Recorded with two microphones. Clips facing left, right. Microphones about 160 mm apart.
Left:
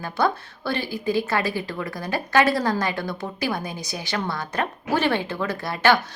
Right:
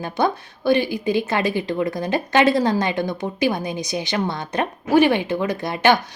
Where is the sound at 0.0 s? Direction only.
15° right (ahead or behind).